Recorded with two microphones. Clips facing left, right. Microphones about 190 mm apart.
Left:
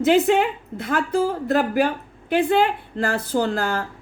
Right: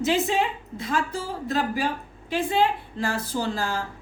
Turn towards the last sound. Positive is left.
turn(degrees=60)  # may be behind; listen again after turning